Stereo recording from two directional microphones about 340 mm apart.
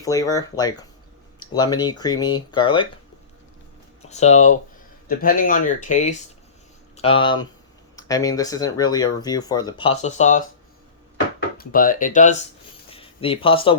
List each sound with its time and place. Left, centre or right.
0.0 s speech: centre
4.1 s speech: centre
11.5 s speech: left